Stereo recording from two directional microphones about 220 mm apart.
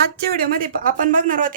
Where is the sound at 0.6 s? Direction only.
40° right (ahead or behind).